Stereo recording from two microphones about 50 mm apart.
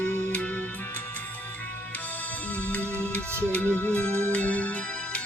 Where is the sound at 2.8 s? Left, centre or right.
Right.